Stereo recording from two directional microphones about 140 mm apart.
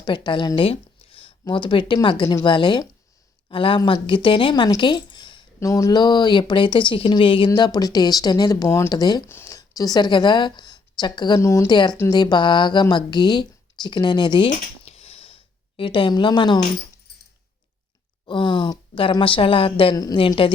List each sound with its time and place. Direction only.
0.0 s speech: 35° left (ahead or behind)
5.5 s speech: 25° left (ahead or behind)
14.8 s a sound: 45° left (ahead or behind)
15.8 s speech: 35° left (ahead or behind)
18.3 s speech: 35° left (ahead or behind)